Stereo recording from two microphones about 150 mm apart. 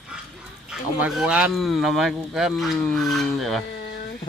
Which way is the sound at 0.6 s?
5° right (ahead or behind).